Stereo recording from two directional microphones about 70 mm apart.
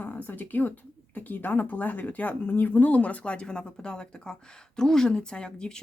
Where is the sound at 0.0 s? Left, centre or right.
Left.